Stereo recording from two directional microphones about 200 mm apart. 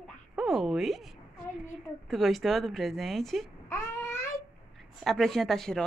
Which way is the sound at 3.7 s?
10° left (ahead or behind).